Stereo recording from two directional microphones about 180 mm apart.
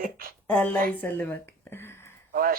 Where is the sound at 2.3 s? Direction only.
55° right (ahead or behind).